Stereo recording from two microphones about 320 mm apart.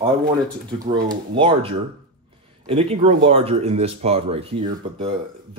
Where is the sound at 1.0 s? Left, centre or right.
Centre.